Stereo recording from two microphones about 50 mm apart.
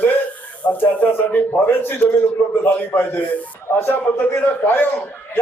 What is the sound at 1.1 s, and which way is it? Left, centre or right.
A man's voice, left.